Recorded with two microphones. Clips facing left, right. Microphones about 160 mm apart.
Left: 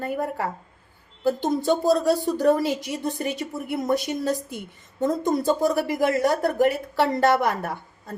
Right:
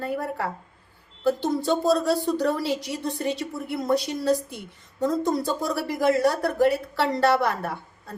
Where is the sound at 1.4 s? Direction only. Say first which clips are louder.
Left 3 dB; 15° left (ahead or behind).